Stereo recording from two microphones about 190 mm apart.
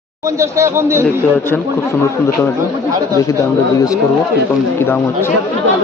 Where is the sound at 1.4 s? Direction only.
15° left (ahead or behind).